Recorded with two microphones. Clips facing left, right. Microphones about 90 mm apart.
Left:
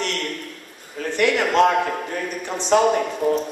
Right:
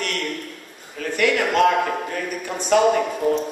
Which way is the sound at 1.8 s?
5° right (ahead or behind).